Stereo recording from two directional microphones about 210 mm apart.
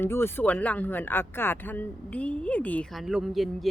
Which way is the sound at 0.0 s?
10° left (ahead or behind).